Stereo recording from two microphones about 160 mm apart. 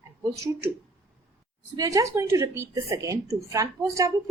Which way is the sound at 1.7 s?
20° right (ahead or behind).